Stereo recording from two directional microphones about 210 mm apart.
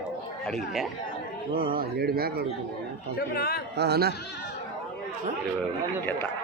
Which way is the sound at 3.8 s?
50° right (ahead or behind).